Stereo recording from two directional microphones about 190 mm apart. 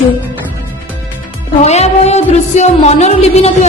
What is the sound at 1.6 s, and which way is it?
Speech, 35° left (ahead or behind).